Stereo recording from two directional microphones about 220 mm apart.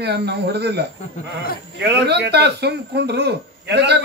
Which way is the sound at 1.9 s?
50° right (ahead or behind).